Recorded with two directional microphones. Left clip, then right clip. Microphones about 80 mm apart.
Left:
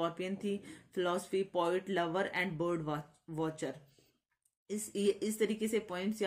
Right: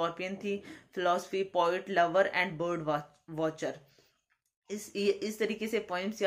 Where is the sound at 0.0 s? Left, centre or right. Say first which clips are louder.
Right 3 dB; left.